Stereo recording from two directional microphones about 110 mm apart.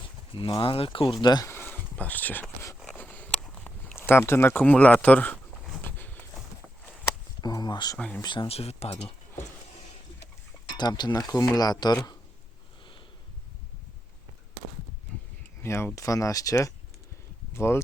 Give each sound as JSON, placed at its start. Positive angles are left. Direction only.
{"t": 0.3, "sound": "speech", "side_deg": 50}
{"t": 1.2, "sound": "speech", "side_deg": 40}
{"t": 1.5, "sound": "speech", "side_deg": 20}
{"t": 2.8, "sound": "a sound", "side_deg": 15}
{"t": 3.6, "sound": "speech", "side_deg": 15}
{"t": 5.8, "sound": "horse", "side_deg": 15}
{"t": 7.4, "sound": "speech", "side_deg": 40}
{"t": 7.9, "sound": "speech", "side_deg": 10}
{"t": 8.2, "sound": "speech", "side_deg": 45}
{"t": 8.4, "sound": "speech", "side_deg": 70}
{"t": 10.8, "sound": "speech", "side_deg": 40}
{"t": 15.6, "sound": "speech", "side_deg": 25}